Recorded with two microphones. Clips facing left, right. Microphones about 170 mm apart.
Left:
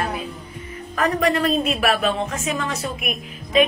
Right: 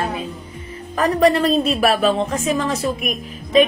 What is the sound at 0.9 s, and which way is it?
A woman's voice, 35° right (ahead or behind).